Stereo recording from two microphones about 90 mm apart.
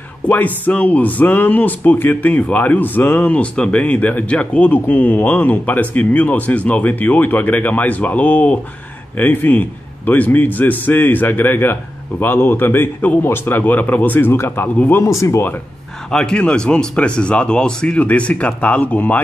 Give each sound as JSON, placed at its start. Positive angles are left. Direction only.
{"t": 0.3, "sound": "speech", "side_deg": 20}
{"t": 15.0, "sound": "speech", "side_deg": 35}
{"t": 16.1, "sound": "speech", "side_deg": 10}